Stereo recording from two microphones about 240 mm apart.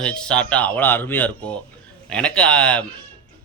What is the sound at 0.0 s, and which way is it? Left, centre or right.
Speech, centre.